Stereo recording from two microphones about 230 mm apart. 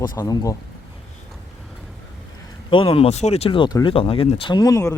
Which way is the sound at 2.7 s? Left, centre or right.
Left.